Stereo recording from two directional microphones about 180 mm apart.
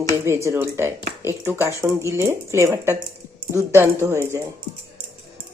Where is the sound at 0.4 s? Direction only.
15° right (ahead or behind).